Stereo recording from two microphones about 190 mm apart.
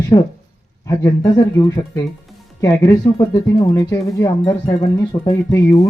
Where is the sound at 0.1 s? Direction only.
20° left (ahead or behind).